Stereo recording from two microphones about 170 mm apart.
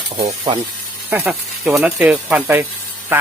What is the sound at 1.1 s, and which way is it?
Speech, 5° right (ahead or behind).